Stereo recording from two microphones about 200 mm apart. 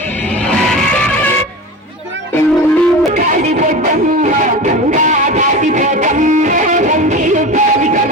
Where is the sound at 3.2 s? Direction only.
40° right (ahead or behind).